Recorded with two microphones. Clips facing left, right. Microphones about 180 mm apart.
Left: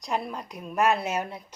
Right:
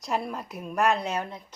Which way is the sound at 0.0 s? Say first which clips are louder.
Right 1 dB; centre (ahead or behind).